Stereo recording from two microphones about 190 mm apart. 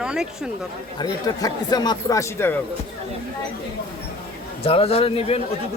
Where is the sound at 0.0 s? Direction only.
5° right (ahead or behind).